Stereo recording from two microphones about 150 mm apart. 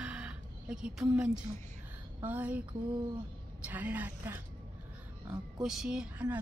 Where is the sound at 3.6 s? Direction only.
10° right (ahead or behind).